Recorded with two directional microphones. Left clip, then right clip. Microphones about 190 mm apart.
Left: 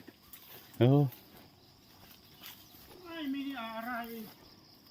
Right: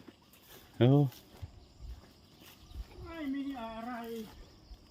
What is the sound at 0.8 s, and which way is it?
Speech, 5° right (ahead or behind).